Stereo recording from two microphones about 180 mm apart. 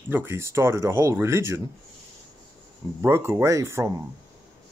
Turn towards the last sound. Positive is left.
turn(degrees=-15)  # may be behind; listen again after turning